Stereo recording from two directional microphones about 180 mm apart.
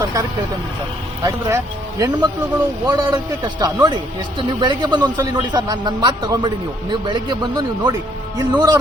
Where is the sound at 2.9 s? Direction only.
25° right (ahead or behind).